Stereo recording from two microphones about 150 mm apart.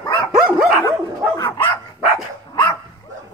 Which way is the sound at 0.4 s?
5° right (ahead or behind).